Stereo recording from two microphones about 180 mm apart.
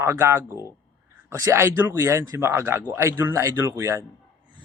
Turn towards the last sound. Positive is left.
turn(degrees=-15)  # may be behind; listen again after turning